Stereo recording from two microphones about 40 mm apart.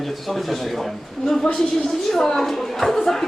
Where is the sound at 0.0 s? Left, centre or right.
Centre.